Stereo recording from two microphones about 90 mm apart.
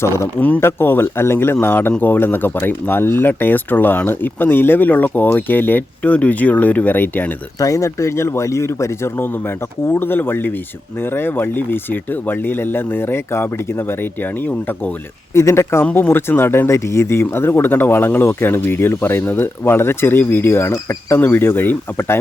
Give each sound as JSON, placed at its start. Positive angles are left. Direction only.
{"t": 0.3, "sound": "speech", "side_deg": 15}
{"t": 7.6, "sound": "speech", "side_deg": 35}
{"t": 15.4, "sound": "speech", "side_deg": 30}